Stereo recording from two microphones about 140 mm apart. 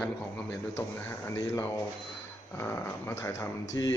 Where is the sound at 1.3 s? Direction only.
20° left (ahead or behind).